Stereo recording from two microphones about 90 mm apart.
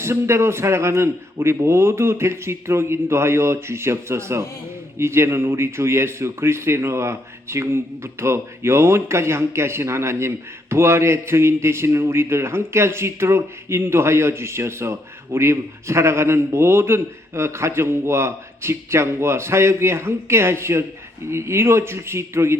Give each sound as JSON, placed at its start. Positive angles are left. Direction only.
{"t": 0.0, "sound": "speech", "side_deg": -30}